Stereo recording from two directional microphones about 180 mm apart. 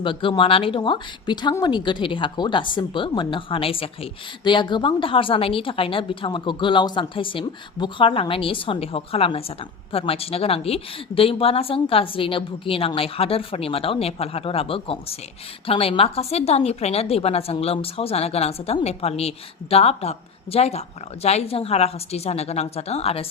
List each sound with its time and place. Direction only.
0.0 s a woman's voice: 30° left (ahead or behind)